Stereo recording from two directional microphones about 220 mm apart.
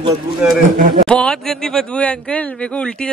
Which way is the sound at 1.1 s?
5° left (ahead or behind).